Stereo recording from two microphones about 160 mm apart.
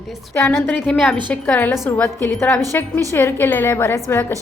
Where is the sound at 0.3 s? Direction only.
15° left (ahead or behind).